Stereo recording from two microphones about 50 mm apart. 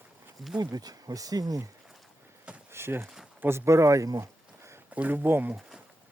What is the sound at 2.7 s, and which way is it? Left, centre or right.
Speech, right.